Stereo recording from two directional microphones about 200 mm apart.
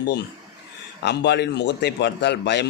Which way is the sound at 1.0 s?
60° left (ahead or behind).